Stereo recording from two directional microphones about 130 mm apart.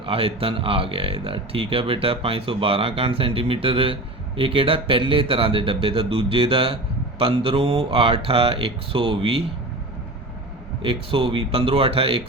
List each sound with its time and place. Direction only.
0.0 s speech: 45° right (ahead or behind)
10.8 s speech: 45° right (ahead or behind)